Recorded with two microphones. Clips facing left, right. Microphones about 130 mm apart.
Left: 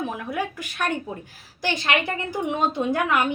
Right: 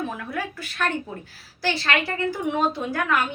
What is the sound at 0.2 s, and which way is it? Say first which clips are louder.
A woman's voice: left 2 dB; 15° left (ahead or behind).